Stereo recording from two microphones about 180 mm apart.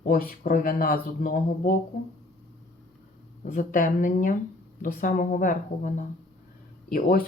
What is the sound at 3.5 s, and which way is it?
Speech, 45° left (ahead or behind).